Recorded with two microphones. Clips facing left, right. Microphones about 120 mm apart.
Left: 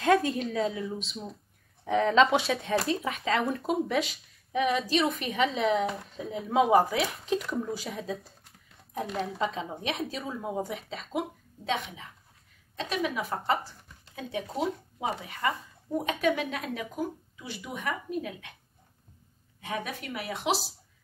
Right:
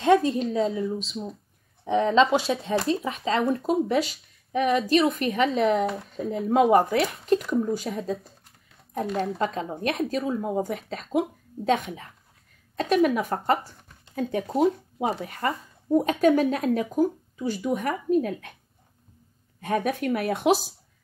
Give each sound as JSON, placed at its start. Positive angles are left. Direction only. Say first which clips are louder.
{"t": 0.6, "sound": "speech", "louder": "right 5 dB", "side_deg": 0}
{"t": 11.6, "sound": "speech", "louder": "right 8 dB", "side_deg": -45}
{"t": 19.6, "sound": "speech", "louder": "right 10 dB", "side_deg": -50}